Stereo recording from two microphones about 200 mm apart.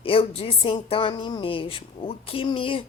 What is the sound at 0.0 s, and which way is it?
A woman's voice, 30° left (ahead or behind).